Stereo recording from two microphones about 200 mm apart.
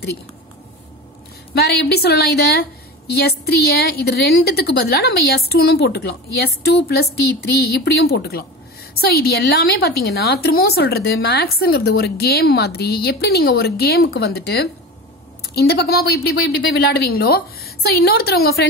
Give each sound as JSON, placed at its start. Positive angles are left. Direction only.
{"t": 1.5, "sound": "a woman's voice", "side_deg": 55}